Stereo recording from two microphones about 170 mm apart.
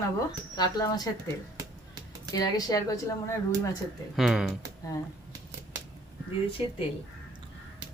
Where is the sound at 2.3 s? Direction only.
20° left (ahead or behind).